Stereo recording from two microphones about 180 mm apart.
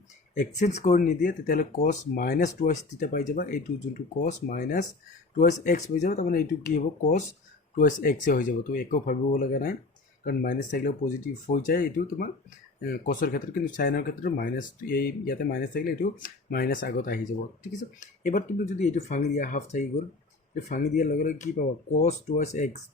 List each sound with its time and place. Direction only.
0.3 s speech: 40° left (ahead or behind); by 17.2 s 55° left (ahead or behind)
17.6 s speech: 45° left (ahead or behind)